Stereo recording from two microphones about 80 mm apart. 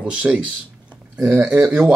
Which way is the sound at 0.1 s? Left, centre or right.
Centre.